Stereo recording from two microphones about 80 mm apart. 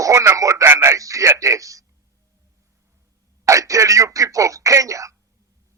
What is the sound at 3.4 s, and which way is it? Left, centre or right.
Speech, right.